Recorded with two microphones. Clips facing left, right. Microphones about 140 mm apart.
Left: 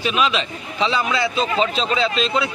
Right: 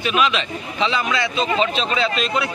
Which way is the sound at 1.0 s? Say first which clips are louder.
Left 1 dB; centre (ahead or behind).